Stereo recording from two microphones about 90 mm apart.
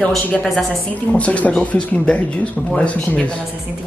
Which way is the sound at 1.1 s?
15° left (ahead or behind).